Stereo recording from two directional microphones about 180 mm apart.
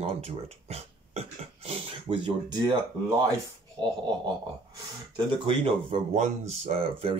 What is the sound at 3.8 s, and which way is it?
Speech, 25° right (ahead or behind).